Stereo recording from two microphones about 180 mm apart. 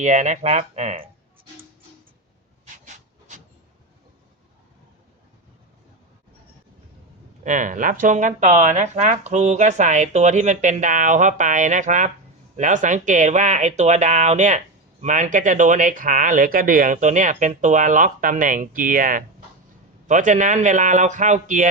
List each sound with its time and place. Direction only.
0.0 s speech: 40° right (ahead or behind)
2.7 s rub: 45° right (ahead or behind)
7.4 s speech: 45° right (ahead or behind)